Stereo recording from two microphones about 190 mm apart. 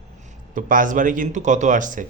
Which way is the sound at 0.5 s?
45° right (ahead or behind).